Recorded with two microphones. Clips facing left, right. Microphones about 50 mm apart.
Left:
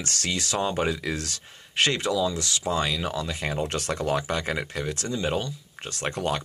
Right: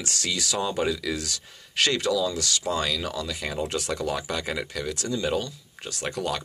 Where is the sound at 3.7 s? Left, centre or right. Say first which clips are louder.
Left 1 dB; left.